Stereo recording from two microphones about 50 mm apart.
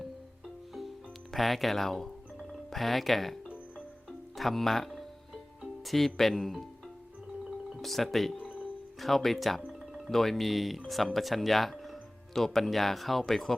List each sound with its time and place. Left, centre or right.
0.0 s music: centre
4.4 s music: centre
6.1 s speech: centre
7.7 s speech: centre